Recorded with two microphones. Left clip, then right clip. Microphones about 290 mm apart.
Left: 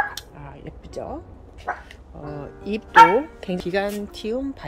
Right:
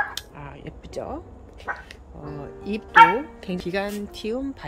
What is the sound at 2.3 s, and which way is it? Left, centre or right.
Speech, centre.